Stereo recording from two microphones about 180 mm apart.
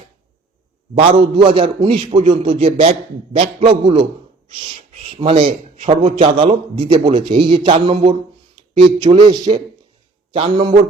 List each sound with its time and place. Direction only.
0.9 s a man's voice: 30° right (ahead or behind)